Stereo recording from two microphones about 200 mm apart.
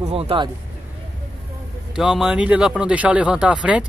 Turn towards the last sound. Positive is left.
turn(degrees=-5)  # may be behind; listen again after turning